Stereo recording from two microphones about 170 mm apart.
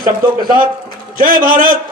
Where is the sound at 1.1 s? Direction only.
55° right (ahead or behind).